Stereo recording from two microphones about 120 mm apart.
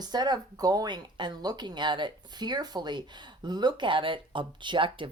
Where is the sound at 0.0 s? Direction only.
35° right (ahead or behind).